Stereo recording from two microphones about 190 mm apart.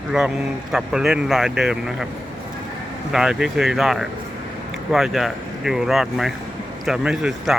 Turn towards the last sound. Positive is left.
turn(degrees=-5)  # may be behind; listen again after turning